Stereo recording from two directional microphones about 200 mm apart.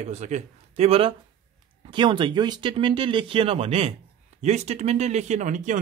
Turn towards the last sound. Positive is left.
turn(degrees=-40)  # may be behind; listen again after turning